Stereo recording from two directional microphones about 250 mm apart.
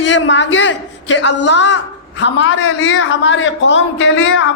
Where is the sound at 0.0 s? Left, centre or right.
Left.